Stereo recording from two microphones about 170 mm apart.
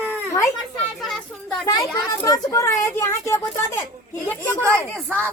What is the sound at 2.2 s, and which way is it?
Speech, 20° left (ahead or behind).